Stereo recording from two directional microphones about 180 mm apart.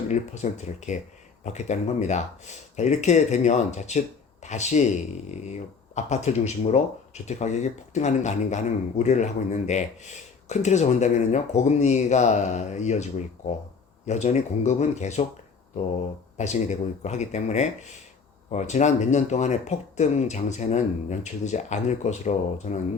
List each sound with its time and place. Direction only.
0.1 s speech: 40° left (ahead or behind)
16.4 s speech: 40° left (ahead or behind)